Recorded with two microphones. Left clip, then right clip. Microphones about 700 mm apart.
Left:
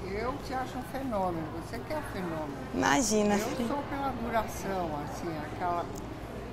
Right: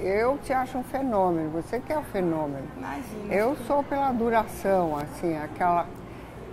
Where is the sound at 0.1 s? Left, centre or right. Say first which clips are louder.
Right 10 dB; right.